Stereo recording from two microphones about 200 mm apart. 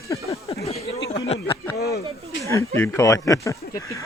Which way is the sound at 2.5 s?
15° left (ahead or behind).